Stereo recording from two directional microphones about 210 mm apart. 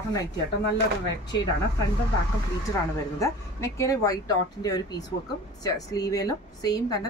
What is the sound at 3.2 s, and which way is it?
Speech, 15° left (ahead or behind).